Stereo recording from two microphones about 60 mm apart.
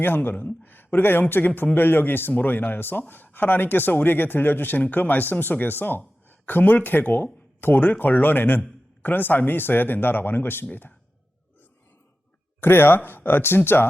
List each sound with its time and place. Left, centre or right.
0.0 s speech: left
12.5 s speech: left